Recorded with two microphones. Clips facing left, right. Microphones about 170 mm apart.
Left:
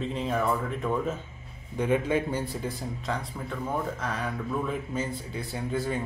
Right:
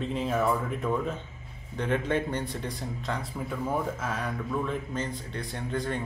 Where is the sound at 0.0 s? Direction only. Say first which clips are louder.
Right 1 dB; centre (ahead or behind).